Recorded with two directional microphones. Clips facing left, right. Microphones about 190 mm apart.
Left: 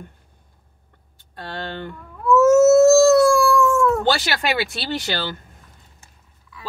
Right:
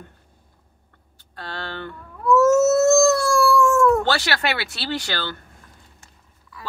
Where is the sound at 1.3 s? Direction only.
15° left (ahead or behind).